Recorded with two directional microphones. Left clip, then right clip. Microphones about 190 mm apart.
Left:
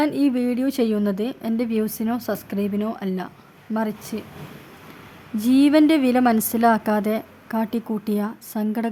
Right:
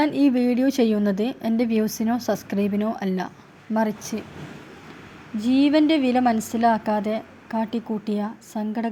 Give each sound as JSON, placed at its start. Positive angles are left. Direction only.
{"t": 0.0, "sound": "a woman's voice", "side_deg": 10}
{"t": 5.4, "sound": "a woman's voice", "side_deg": 20}